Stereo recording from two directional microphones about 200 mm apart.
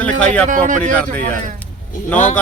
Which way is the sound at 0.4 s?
40° right (ahead or behind).